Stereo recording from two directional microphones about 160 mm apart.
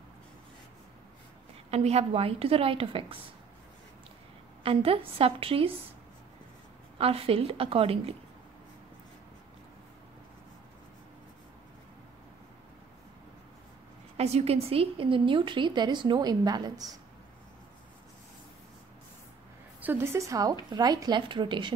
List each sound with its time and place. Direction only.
1.7 s a woman's voice: 40° right (ahead or behind)
4.6 s a woman's voice: 35° right (ahead or behind)
7.0 s a woman's voice: 35° right (ahead or behind)
14.1 s a woman's voice: 40° right (ahead or behind); by 17.0 s 25° right (ahead or behind)
19.8 s a woman's voice: 15° right (ahead or behind); by 21.7 s 30° right (ahead or behind)